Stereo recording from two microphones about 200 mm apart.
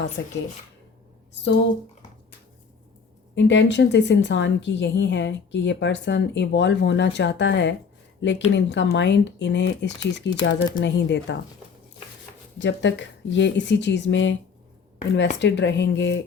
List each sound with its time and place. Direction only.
0.2 s a woman's voice: 65° left (ahead or behind)
3.3 s a woman's voice: 65° left (ahead or behind)
12.5 s a woman's voice: 65° left (ahead or behind)
15.4 s a woman's voice: 60° left (ahead or behind)